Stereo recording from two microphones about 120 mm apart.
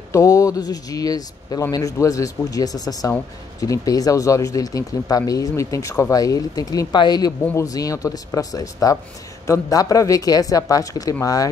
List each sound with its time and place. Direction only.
0.1 s speech: 25° left (ahead or behind)